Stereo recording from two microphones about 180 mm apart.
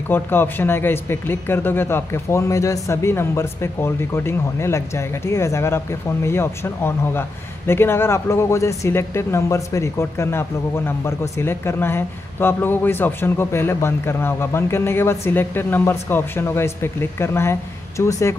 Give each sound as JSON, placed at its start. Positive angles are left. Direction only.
{"t": 0.1, "sound": "speech", "side_deg": 10}